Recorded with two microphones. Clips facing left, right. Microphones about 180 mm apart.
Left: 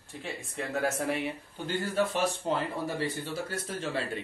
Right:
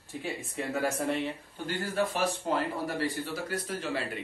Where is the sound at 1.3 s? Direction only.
20° left (ahead or behind).